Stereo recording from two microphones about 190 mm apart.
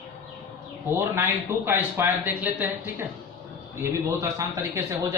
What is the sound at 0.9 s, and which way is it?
Speech, 10° right (ahead or behind).